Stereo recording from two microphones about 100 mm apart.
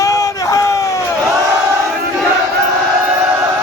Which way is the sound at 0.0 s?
35° left (ahead or behind).